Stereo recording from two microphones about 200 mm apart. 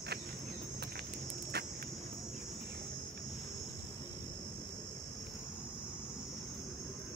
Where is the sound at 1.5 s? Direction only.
55° right (ahead or behind).